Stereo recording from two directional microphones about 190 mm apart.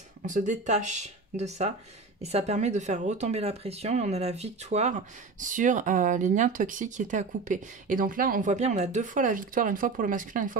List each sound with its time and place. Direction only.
0.3 s speech: 40° right (ahead or behind)